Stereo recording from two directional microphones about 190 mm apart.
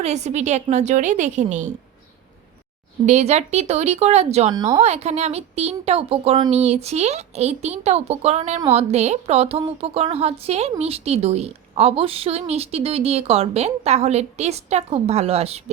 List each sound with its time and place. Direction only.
0.0 s a woman's voice: 35° right (ahead or behind)
3.1 s a woman's voice: 35° right (ahead or behind)